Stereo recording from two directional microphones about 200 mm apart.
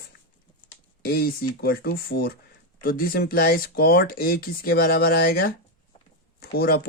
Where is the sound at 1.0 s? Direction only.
45° left (ahead or behind).